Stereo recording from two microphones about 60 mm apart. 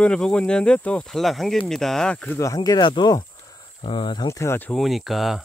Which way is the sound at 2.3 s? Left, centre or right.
Left.